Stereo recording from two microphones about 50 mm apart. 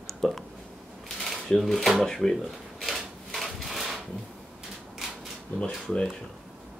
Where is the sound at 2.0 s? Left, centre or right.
Centre.